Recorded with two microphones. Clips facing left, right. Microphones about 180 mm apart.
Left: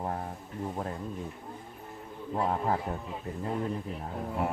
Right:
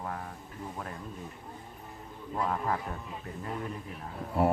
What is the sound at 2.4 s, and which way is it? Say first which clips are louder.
Speech: left 2 dB; 30° left (ahead or behind).